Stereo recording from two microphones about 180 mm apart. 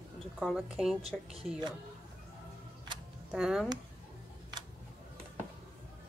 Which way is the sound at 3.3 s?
5° right (ahead or behind).